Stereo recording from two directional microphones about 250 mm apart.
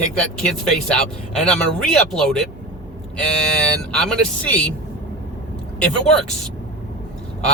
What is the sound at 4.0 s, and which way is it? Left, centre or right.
Speech, centre.